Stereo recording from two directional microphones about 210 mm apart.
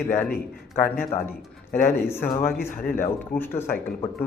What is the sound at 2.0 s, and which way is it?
A man's voice, 10° left (ahead or behind).